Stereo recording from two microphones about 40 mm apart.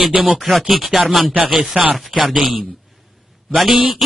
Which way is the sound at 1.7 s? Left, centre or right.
Right.